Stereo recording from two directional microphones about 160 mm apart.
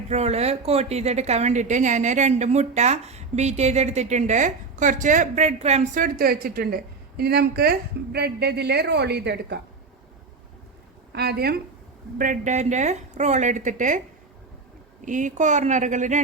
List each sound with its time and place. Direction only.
0.1 s a woman's voice: 40° right (ahead or behind); by 6.7 s 70° right (ahead or behind)
7.2 s a woman's voice: 80° right
11.1 s a woman's voice: 80° right
12.1 s a woman's voice: 55° right (ahead or behind)
15.0 s a woman's voice: 50° right (ahead or behind)